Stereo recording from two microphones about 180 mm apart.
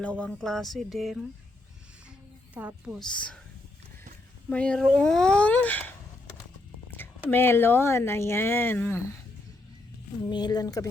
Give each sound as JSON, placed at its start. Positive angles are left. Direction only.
{"t": 0.0, "sound": "speech", "side_deg": 5}
{"t": 2.6, "sound": "speech", "side_deg": -10}
{"t": 3.0, "sound": "speech", "side_deg": 5}
{"t": 4.4, "sound": "speech", "side_deg": 5}
{"t": 7.3, "sound": "speech", "side_deg": 10}
{"t": 10.2, "sound": "speech", "side_deg": 25}